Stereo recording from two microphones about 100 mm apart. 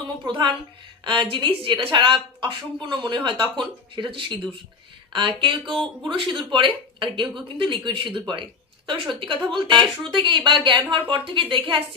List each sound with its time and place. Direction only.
0.2 s a woman's voice: 50° right (ahead or behind)